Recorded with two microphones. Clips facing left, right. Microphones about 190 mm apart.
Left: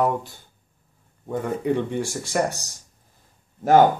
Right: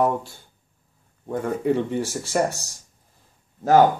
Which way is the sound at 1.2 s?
5° right (ahead or behind).